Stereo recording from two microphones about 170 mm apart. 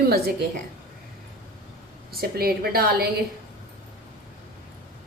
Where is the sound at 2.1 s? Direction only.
65° right (ahead or behind).